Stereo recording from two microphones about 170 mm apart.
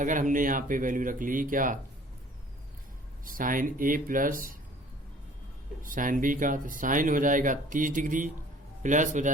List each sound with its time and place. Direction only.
0.0 s speech: 50° right (ahead or behind)
3.2 s speech: 55° right (ahead or behind)
5.8 s speech: 50° right (ahead or behind)